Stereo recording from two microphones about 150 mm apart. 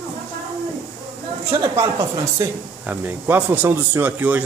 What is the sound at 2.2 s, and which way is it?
A man's voice, 15° right (ahead or behind).